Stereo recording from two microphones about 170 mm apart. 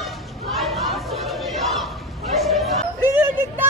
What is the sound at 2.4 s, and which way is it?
Music, centre (ahead or behind).